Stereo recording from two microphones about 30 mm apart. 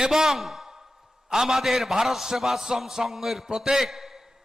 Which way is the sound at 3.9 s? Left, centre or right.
Centre.